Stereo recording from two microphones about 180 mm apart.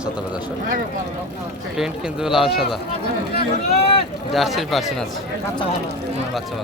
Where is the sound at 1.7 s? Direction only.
5° right (ahead or behind).